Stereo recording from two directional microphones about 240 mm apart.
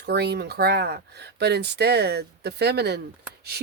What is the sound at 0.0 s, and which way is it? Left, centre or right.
Speech, right.